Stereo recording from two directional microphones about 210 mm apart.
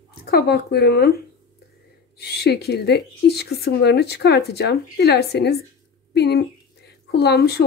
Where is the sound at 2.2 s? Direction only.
50° left (ahead or behind).